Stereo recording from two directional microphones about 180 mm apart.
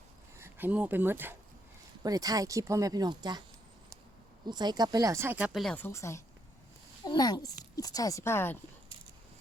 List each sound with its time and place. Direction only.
0.3 s speech: 10° right (ahead or behind)
4.4 s speech: 25° right (ahead or behind); by 8.5 s 15° left (ahead or behind)